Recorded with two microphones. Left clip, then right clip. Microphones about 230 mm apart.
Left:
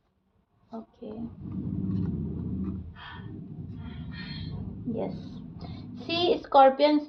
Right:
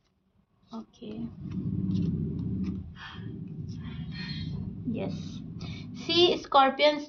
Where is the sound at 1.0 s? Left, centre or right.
Right.